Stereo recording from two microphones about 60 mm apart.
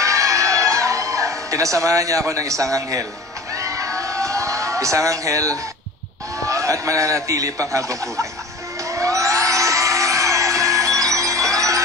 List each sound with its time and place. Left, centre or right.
0.0 s music: right
3.5 s a sound: right
6.4 s a man's voice: right
8.9 s music: right